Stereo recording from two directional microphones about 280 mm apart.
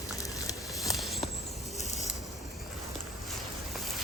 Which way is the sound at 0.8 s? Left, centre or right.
Centre.